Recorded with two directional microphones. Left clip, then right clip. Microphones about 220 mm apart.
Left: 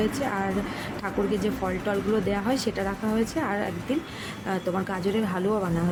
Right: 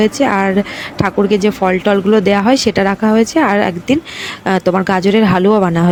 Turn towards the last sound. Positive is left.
turn(degrees=-35)  # may be behind; listen again after turning